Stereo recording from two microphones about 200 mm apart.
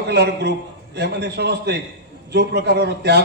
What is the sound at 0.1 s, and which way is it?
A man's voice, 55° right (ahead or behind).